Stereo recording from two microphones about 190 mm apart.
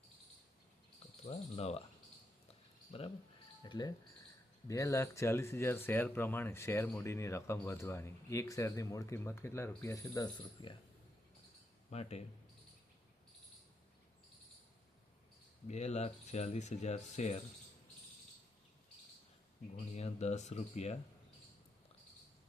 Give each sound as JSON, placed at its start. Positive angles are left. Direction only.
{"t": 1.3, "sound": "speech", "side_deg": 30}
{"t": 2.9, "sound": "speech", "side_deg": 30}
{"t": 11.9, "sound": "speech", "side_deg": 35}
{"t": 15.6, "sound": "speech", "side_deg": 35}
{"t": 19.7, "sound": "speech", "side_deg": 35}